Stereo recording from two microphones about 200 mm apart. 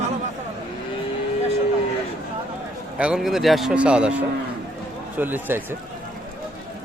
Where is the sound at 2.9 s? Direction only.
5° right (ahead or behind).